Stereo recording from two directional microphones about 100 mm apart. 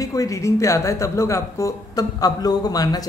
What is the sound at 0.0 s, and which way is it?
Speech, 35° left (ahead or behind).